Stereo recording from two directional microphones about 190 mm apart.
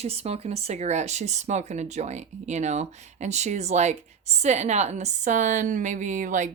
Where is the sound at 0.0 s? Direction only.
35° right (ahead or behind).